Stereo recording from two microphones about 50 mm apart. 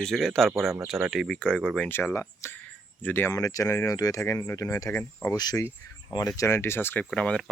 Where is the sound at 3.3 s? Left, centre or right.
Left.